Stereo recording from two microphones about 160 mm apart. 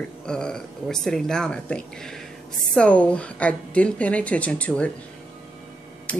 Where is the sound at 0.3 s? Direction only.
5° left (ahead or behind).